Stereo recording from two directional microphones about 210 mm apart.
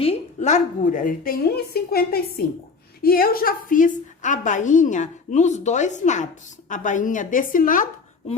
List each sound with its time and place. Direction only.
0.0 s a woman's voice: 30° left (ahead or behind)